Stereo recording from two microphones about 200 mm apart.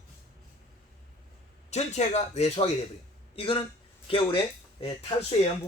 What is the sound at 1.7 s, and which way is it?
Speech, 35° left (ahead or behind).